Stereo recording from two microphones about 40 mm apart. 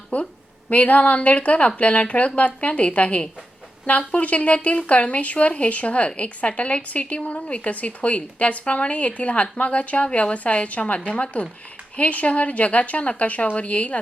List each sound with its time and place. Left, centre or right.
0.1 s a woman's voice: left